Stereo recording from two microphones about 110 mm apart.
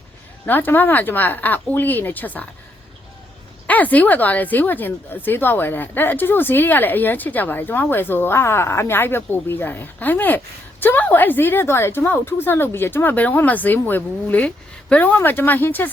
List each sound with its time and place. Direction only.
0.4 s speech: 15° left (ahead or behind)
3.7 s speech: 15° left (ahead or behind)